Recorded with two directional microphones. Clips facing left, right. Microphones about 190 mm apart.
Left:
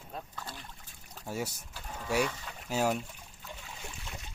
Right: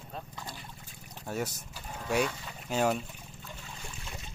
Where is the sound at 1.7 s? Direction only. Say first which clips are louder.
Even; 10° right (ahead or behind).